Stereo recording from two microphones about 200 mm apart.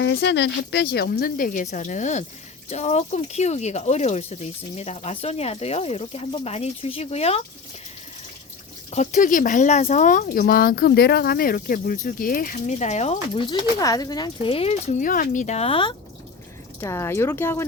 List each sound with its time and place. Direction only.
0.0 s speech: 60° left (ahead or behind); by 7.4 s 30° left (ahead or behind)
8.9 s speech: 35° left (ahead or behind)
16.8 s speech: 15° left (ahead or behind)